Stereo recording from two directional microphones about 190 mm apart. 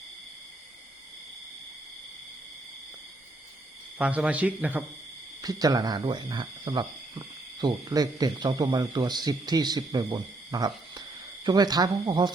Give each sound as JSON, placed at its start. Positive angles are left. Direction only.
{"t": 3.9, "sound": "a man's voice", "side_deg": -5}
{"t": 5.4, "sound": "speech", "side_deg": -20}